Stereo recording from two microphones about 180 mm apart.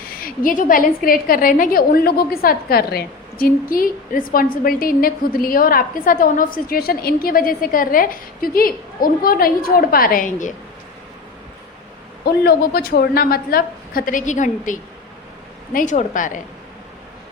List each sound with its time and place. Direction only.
0.1 s a woman's voice: 55° left (ahead or behind)
12.2 s a woman's voice: 60° left (ahead or behind)